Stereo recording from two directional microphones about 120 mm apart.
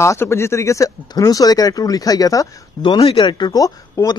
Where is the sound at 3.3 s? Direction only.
35° left (ahead or behind).